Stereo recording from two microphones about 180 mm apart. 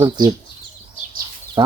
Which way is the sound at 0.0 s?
20° right (ahead or behind).